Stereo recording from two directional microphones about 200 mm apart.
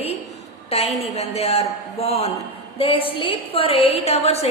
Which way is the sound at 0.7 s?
30° left (ahead or behind).